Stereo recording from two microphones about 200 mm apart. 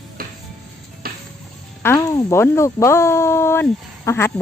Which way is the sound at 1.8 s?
15° left (ahead or behind).